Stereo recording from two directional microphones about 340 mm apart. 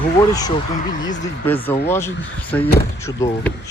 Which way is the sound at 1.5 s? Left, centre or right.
Centre.